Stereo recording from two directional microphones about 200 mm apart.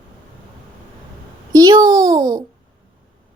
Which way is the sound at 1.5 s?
20° right (ahead or behind).